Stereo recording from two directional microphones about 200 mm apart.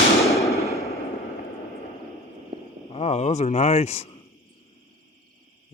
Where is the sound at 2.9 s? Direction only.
35° left (ahead or behind).